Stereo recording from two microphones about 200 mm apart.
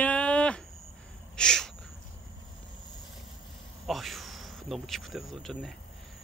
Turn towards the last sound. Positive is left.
turn(degrees=0)  # may be behind; listen again after turning